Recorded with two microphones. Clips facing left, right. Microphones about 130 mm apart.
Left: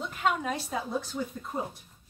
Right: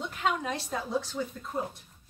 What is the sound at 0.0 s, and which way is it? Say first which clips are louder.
Speech: left 1 dB; 5° left (ahead or behind).